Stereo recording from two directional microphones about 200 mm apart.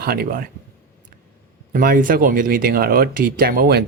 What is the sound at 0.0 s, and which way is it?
Speech, 50° right (ahead or behind).